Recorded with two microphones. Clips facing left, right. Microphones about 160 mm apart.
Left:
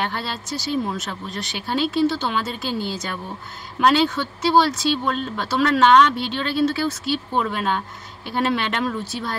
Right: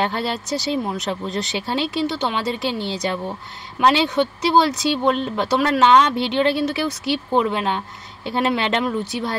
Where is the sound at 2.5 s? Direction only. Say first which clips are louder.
Right 3 dB; 90° right.